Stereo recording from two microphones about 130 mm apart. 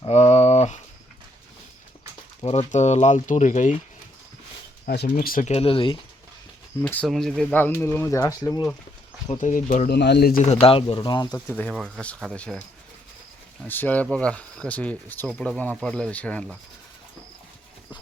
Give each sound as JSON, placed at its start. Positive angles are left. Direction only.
{"t": 0.1, "sound": "a sound", "side_deg": 60}
{"t": 2.4, "sound": "speech", "side_deg": 50}
{"t": 5.0, "sound": "speech", "side_deg": 85}
{"t": 5.5, "sound": "speech", "side_deg": 45}
{"t": 6.8, "sound": "speech", "side_deg": 10}
{"t": 7.5, "sound": "speech", "side_deg": 15}
{"t": 9.4, "sound": "speech", "side_deg": 85}
{"t": 10.3, "sound": "speech", "side_deg": 60}
{"t": 11.4, "sound": "speech", "side_deg": 10}
{"t": 13.7, "sound": "speech", "side_deg": 15}